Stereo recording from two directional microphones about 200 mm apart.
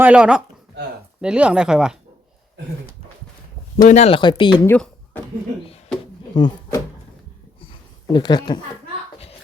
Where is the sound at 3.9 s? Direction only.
30° left (ahead or behind).